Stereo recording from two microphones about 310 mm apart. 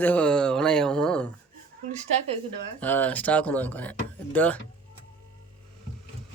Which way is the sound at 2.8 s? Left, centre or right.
Centre.